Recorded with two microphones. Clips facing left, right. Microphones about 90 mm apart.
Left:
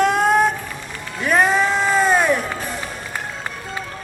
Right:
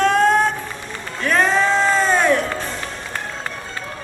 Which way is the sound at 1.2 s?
15° left (ahead or behind).